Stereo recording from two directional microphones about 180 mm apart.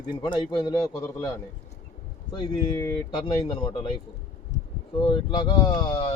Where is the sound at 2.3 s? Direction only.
25° left (ahead or behind).